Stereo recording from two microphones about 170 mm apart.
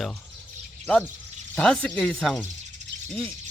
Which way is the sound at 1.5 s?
5° left (ahead or behind).